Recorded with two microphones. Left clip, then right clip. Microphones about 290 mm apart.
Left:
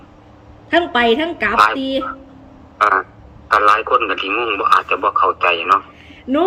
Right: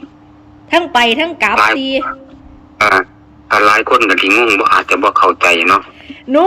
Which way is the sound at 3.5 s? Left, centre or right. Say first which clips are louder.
Right 3 dB; right.